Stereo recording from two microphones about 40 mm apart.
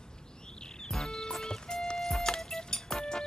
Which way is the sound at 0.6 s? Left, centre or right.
Centre.